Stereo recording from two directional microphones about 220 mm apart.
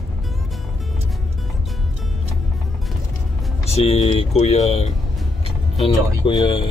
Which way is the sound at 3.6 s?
30° left (ahead or behind).